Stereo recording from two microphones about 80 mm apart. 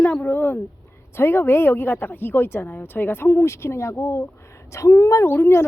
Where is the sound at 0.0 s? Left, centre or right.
Centre.